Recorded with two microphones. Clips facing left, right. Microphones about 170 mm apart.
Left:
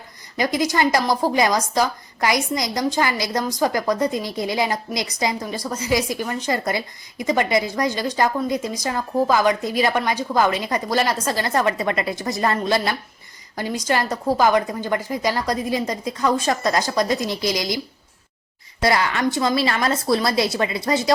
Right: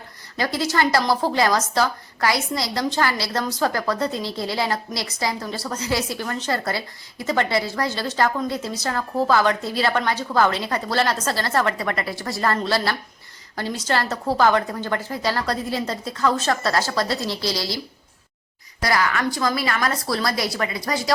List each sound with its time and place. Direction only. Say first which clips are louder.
0.3 s speech: left 2 dB; 15° left (ahead or behind)
18.8 s a woman's voice: left 2 dB; 25° left (ahead or behind)